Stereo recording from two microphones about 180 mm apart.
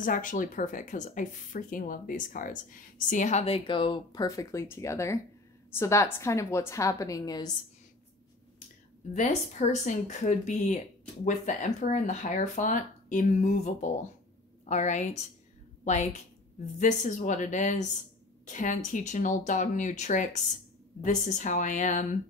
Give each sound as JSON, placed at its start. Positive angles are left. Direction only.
{"t": 0.0, "sound": "a woman's voice", "side_deg": 50}
{"t": 9.1, "sound": "a woman's voice", "side_deg": 40}